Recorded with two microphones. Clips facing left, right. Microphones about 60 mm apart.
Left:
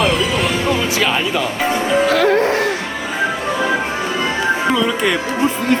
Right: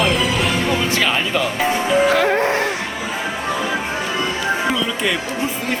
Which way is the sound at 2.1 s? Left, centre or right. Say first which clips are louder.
Left 2 dB; right.